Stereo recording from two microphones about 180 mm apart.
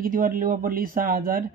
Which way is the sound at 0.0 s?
50° right (ahead or behind).